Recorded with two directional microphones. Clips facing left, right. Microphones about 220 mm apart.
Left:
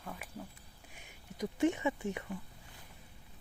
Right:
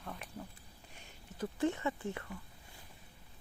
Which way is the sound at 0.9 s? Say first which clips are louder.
Left 2 dB; 15° left (ahead or behind).